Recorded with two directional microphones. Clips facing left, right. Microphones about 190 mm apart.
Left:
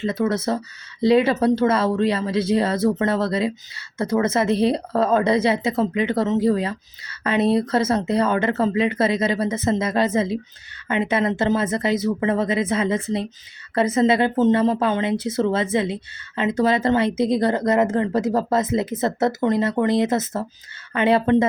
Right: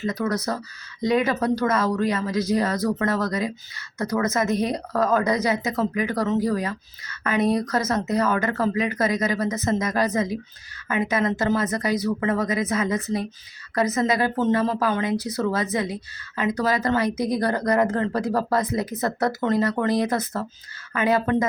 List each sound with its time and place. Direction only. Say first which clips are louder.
0.0 s a woman's voice: left 3 dB; 25° left (ahead or behind)